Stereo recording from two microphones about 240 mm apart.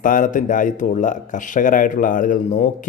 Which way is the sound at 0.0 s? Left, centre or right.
Left.